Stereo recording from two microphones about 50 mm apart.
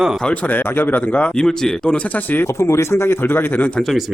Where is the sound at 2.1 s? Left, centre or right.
Left.